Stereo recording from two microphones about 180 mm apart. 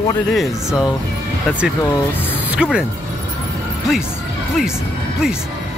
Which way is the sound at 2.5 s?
5° right (ahead or behind).